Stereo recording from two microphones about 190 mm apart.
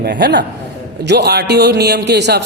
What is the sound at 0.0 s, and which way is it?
A man's voice, 60° right (ahead or behind).